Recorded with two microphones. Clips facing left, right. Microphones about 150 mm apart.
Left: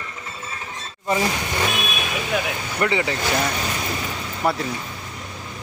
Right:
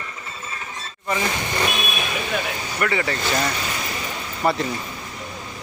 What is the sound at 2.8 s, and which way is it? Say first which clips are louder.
Speech: left 1 dB; 20° left (ahead or behind).